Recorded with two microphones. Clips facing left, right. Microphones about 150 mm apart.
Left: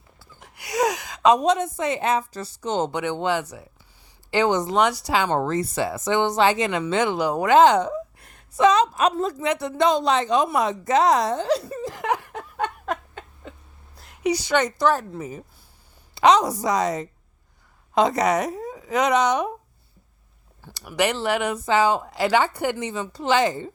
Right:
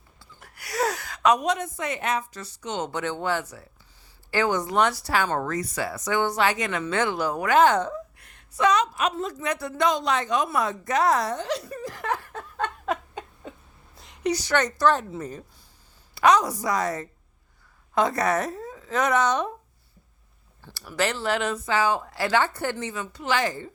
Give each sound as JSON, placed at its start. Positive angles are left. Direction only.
{"t": 0.3, "sound": "a sound", "side_deg": 20}
{"t": 1.8, "sound": "speech", "side_deg": 25}
{"t": 2.9, "sound": "speech", "side_deg": 15}
{"t": 8.2, "sound": "a sound", "side_deg": 25}
{"t": 9.0, "sound": "a woman's voice", "side_deg": 35}
{"t": 9.5, "sound": "a woman's voice", "side_deg": 25}
{"t": 14.0, "sound": "a woman's voice", "side_deg": 5}
{"t": 16.1, "sound": "speech", "side_deg": 25}
{"t": 20.6, "sound": "speech", "side_deg": 15}